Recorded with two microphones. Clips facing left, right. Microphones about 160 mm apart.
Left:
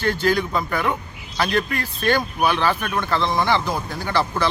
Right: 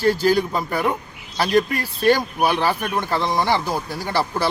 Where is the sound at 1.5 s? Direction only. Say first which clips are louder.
Right 7 dB; 10° right (ahead or behind).